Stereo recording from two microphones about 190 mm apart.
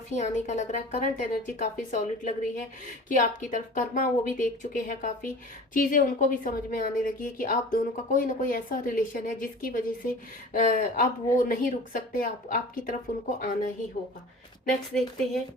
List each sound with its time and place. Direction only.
0.1 s a woman's voice: 40° left (ahead or behind)